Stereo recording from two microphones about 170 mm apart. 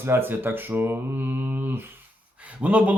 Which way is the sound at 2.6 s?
10° right (ahead or behind).